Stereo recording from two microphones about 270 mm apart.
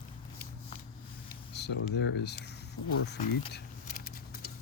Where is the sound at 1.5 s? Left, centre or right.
Left.